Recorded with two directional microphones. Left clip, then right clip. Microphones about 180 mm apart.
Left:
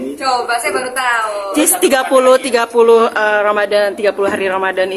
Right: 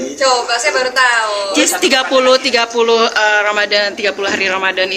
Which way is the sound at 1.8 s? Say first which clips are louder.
Left 3 dB; 40° left (ahead or behind).